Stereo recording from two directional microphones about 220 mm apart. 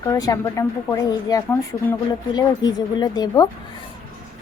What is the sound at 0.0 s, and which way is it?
A woman's voice, 15° left (ahead or behind).